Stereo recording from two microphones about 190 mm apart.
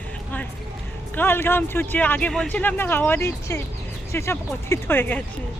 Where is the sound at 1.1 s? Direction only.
10° left (ahead or behind).